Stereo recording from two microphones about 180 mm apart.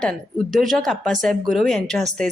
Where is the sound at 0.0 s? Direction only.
Centre (ahead or behind).